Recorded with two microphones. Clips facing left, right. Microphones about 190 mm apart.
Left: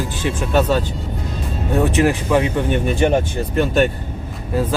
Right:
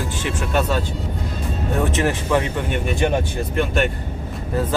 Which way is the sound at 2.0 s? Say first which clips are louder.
Left 4 dB; 15° left (ahead or behind).